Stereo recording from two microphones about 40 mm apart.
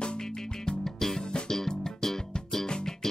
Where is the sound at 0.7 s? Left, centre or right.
Centre.